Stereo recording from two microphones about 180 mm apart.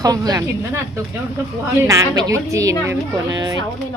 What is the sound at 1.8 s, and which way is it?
A woman's voice, 15° right (ahead or behind).